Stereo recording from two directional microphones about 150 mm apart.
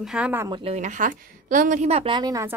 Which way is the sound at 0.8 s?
55° right (ahead or behind).